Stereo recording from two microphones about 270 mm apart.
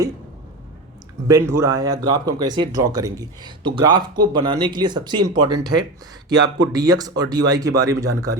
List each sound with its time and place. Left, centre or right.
1.3 s speech: centre
6.7 s speech: centre